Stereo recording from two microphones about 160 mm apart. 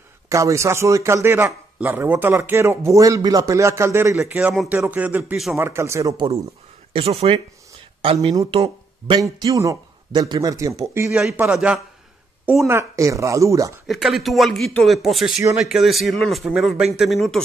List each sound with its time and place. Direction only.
0.3 s a man's voice: 20° right (ahead or behind)
6.9 s speech: 40° right (ahead or behind)
9.2 s speech: 20° right (ahead or behind)
11.1 s speech: 5° right (ahead or behind)
12.6 s speech: 15° right (ahead or behind)
13.8 s speech: centre (ahead or behind)